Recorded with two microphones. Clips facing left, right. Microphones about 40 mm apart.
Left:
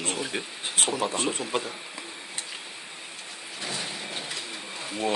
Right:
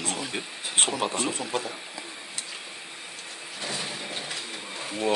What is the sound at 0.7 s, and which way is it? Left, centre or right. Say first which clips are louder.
Speech: right 1 dB; right.